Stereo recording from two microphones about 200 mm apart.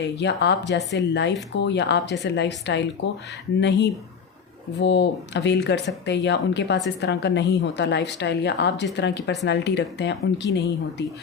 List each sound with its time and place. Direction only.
0.0 s a woman's voice: 60° left (ahead or behind)